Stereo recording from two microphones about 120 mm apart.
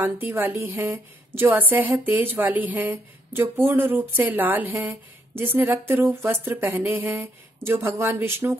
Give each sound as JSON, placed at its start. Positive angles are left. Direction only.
{"t": 0.0, "sound": "a woman's voice", "side_deg": -15}